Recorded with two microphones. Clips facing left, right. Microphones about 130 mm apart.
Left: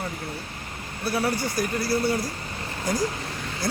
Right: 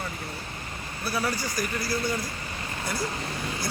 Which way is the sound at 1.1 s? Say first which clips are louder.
Left 4 dB; 25° left (ahead or behind).